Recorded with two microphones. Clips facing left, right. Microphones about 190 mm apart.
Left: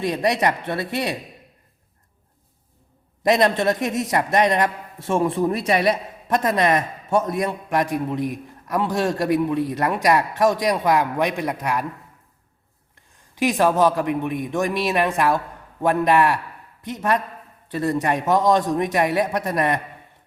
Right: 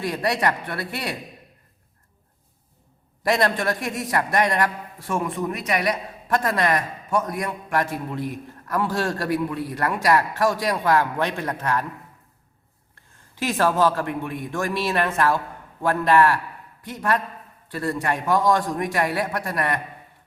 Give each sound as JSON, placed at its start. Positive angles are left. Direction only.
{"t": 0.0, "sound": "a man's voice", "side_deg": 20}
{"t": 3.2, "sound": "a man's voice", "side_deg": 20}
{"t": 13.3, "sound": "a man's voice", "side_deg": 15}